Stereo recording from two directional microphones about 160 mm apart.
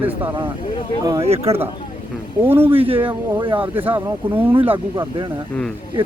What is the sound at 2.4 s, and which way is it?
Speech, 15° right (ahead or behind).